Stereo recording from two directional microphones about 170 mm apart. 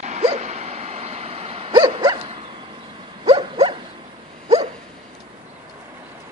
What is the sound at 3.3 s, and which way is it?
Dog, 35° right (ahead or behind).